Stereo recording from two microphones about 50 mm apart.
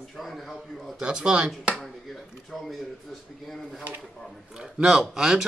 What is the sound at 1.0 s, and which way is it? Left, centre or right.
Speech, centre.